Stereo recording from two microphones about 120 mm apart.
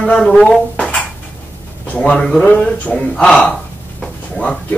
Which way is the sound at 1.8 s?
10° left (ahead or behind).